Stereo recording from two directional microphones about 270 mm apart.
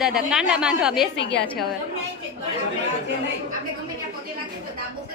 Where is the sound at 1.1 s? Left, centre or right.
Left.